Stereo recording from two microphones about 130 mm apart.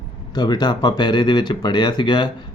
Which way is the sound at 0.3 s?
30° left (ahead or behind).